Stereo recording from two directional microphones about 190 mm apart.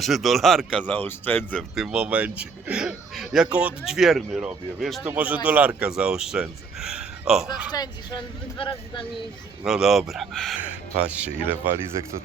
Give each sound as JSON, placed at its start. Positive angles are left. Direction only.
{"t": 0.0, "sound": "speech", "side_deg": 0}
{"t": 1.7, "sound": "speech", "side_deg": -5}
{"t": 7.7, "sound": "speech", "side_deg": 25}
{"t": 9.6, "sound": "speech", "side_deg": 0}